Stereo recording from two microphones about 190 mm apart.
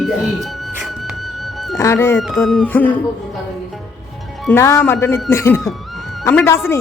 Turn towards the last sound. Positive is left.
turn(degrees=10)  # may be behind; listen again after turning